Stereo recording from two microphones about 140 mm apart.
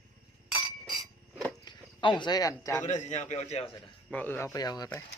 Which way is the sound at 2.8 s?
60° left (ahead or behind).